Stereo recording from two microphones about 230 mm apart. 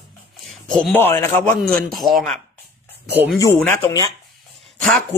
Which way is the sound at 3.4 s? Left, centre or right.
Centre.